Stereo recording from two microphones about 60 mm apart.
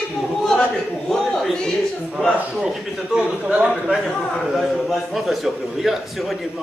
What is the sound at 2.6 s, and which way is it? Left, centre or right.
Speech, centre.